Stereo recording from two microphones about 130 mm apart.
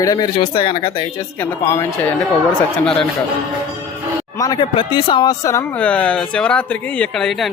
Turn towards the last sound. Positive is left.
turn(degrees=5)  # may be behind; listen again after turning